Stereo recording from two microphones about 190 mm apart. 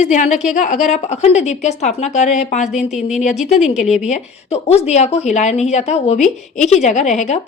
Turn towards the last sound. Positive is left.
turn(degrees=40)  # may be behind; listen again after turning